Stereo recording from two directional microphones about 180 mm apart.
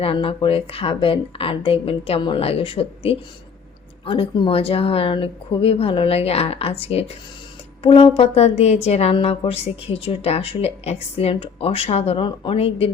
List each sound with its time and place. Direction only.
0.0 s a woman's voice: 30° left (ahead or behind)